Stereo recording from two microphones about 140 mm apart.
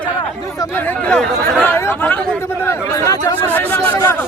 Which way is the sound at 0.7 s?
10° left (ahead or behind).